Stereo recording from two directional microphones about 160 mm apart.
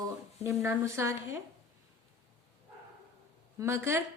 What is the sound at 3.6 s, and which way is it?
Speech, 15° right (ahead or behind).